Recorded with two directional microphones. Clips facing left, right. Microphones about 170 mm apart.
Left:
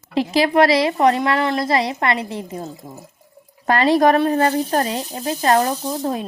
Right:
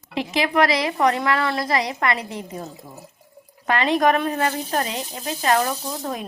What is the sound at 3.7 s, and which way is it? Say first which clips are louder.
Speech: left 4 dB; 35° left (ahead or behind).